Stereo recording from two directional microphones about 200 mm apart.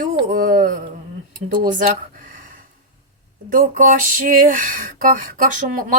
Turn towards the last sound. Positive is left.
turn(degrees=-40)  # may be behind; listen again after turning